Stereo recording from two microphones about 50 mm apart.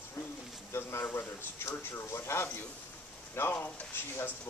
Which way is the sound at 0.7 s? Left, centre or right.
Left.